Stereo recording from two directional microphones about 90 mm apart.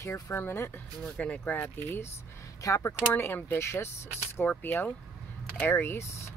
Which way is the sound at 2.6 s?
40° left (ahead or behind).